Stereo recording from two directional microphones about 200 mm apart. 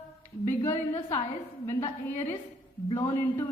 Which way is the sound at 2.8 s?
15° left (ahead or behind).